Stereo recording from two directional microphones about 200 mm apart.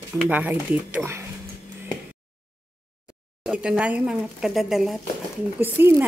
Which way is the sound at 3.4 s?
5° right (ahead or behind).